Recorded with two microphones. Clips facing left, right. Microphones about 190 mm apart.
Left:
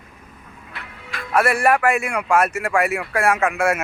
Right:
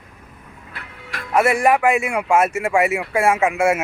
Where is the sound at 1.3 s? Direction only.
20° right (ahead or behind).